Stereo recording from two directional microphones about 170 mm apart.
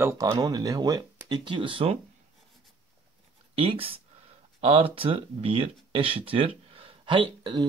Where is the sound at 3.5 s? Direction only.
35° right (ahead or behind).